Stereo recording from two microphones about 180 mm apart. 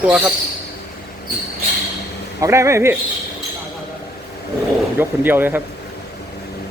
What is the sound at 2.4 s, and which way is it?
Speech, 15° right (ahead or behind).